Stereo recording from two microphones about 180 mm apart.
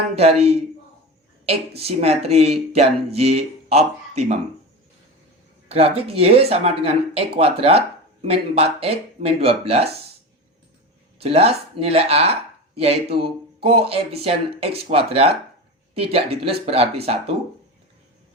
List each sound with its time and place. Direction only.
0.2 s speech: 35° right (ahead or behind)
5.6 s speech: 35° right (ahead or behind)
11.2 s speech: 35° right (ahead or behind)